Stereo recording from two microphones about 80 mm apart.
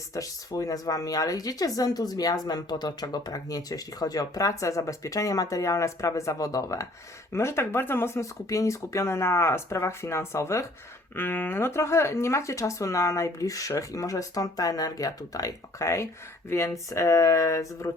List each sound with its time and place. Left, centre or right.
0.1 s speech: left
7.3 s speech: left